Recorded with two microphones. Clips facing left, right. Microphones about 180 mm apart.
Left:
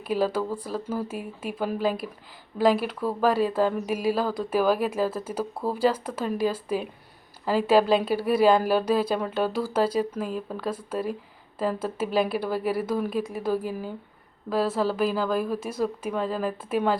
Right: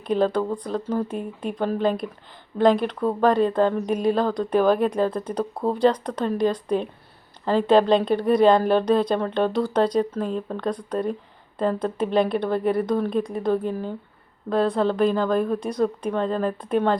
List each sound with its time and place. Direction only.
0.1 s speech: 5° left (ahead or behind)